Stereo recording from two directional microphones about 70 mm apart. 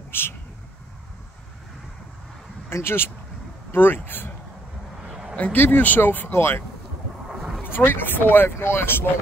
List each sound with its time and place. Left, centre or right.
0.1 s vehicle: left
2.7 s speech: left
5.3 s speech: left
7.6 s speech: left